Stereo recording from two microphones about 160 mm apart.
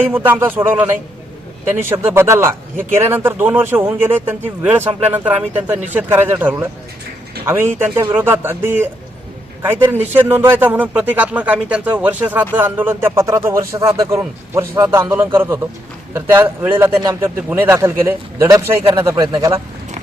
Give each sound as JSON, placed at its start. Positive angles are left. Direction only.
{"t": 0.0, "sound": "speech", "side_deg": -15}